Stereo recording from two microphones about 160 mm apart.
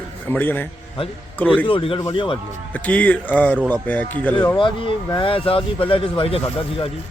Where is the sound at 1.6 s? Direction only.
35° left (ahead or behind).